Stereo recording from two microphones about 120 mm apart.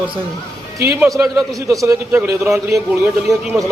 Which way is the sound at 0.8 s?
20° right (ahead or behind).